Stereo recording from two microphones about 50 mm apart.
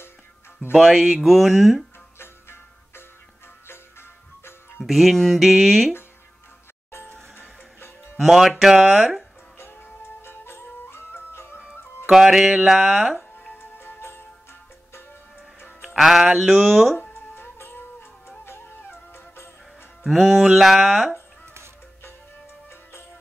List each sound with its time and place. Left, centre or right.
0.7 s speech: centre
4.7 s speech: centre
8.2 s speech: centre
9.6 s music: left
12.1 s speech: centre
13.6 s music: left
16.0 s speech: centre
17.1 s music: left
20.1 s speech: centre